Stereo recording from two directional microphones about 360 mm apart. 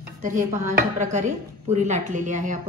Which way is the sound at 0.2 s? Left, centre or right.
Right.